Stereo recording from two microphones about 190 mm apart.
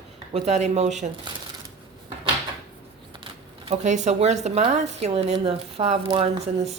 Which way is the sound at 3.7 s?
40° right (ahead or behind).